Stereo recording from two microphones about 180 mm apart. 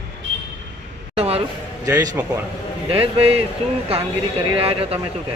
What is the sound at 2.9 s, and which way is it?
Speech, 30° right (ahead or behind).